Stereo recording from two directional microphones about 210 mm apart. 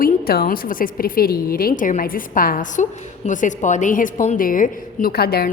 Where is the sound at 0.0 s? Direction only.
45° left (ahead or behind).